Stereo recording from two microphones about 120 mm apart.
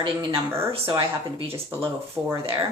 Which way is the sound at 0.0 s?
45° right (ahead or behind).